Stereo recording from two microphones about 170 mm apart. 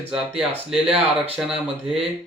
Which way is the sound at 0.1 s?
5° right (ahead or behind).